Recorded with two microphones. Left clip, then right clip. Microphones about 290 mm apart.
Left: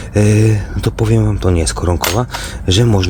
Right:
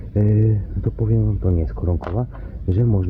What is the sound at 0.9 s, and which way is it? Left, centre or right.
Speech, centre.